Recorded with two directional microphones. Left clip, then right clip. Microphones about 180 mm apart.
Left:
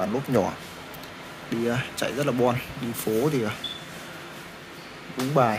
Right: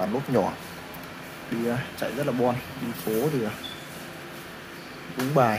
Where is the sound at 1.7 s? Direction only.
30° left (ahead or behind).